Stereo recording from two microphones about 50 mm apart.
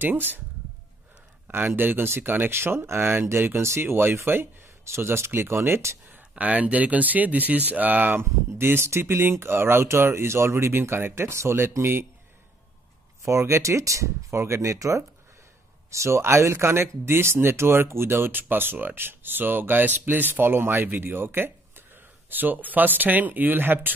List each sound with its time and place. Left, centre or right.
0.0 s speech: right
1.8 s speech: right
6.3 s speech: right
8.2 s speech: right
13.2 s speech: right
15.9 s speech: right